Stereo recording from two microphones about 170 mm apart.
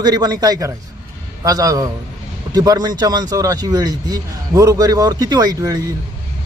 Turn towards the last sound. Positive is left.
turn(degrees=-20)  # may be behind; listen again after turning